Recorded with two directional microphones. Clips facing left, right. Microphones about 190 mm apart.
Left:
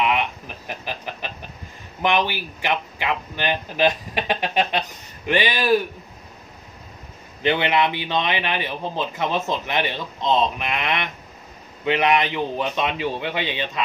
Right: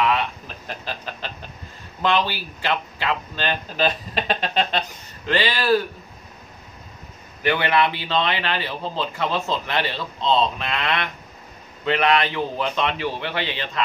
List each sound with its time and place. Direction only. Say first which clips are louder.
0.0 s a sound: even; 15° left (ahead or behind)
2.0 s speech: even; 15° left (ahead or behind)
7.4 s speech: even; 20° left (ahead or behind)